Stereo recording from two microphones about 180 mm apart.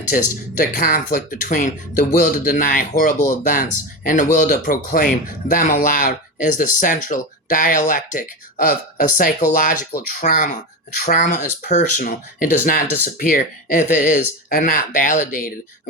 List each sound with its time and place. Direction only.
0.6 s speech: 50° left (ahead or behind)